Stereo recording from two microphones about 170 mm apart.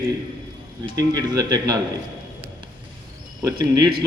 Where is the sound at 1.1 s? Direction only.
20° right (ahead or behind).